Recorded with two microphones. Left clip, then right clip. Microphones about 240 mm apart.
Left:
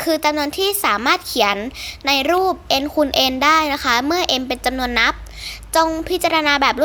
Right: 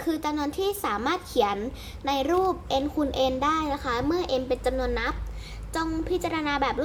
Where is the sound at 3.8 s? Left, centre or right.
Left.